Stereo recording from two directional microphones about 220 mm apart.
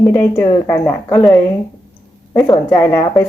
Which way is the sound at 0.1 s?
10° left (ahead or behind).